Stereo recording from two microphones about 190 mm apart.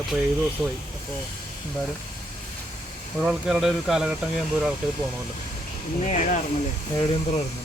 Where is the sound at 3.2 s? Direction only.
5° right (ahead or behind).